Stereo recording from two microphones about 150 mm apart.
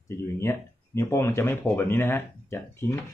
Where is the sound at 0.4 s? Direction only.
20° left (ahead or behind).